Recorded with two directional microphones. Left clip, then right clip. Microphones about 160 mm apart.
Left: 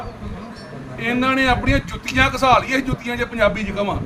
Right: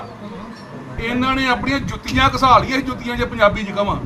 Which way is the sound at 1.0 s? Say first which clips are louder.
Left 1 dB; 10° left (ahead or behind).